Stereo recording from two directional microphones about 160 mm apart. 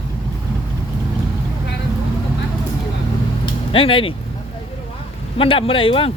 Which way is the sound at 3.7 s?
35° left (ahead or behind).